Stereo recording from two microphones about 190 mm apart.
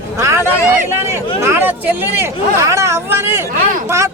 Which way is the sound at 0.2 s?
15° right (ahead or behind).